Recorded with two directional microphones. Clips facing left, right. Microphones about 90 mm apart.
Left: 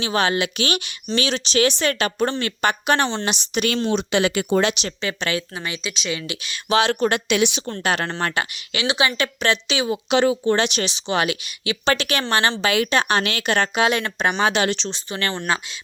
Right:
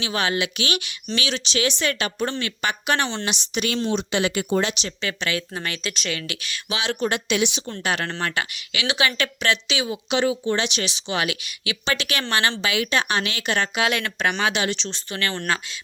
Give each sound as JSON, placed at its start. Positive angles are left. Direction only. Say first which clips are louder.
{"t": 0.0, "sound": "a woman's voice", "louder": "left 3 dB", "side_deg": 35}
{"t": 3.3, "sound": "speech", "louder": "left 3 dB", "side_deg": 50}
{"t": 4.9, "sound": "speech", "louder": "left 2 dB", "side_deg": 30}
{"t": 5.5, "sound": "speech", "louder": "even", "side_deg": 15}
{"t": 6.7, "sound": "a woman's voice", "louder": "left 6 dB", "side_deg": 50}
{"t": 7.3, "sound": "speech", "louder": "left 3 dB", "side_deg": 65}
{"t": 7.7, "sound": "a woman's voice", "louder": "left 3 dB", "side_deg": 45}
{"t": 13.7, "sound": "a woman's voice", "louder": "left 3 dB", "side_deg": 30}
{"t": 14.6, "sound": "a woman's voice", "louder": "left 4 dB", "side_deg": 50}
{"t": 14.8, "sound": "speech", "louder": "left 2 dB", "side_deg": 20}